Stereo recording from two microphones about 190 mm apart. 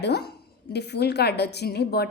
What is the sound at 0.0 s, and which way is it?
A woman's voice, 60° left (ahead or behind).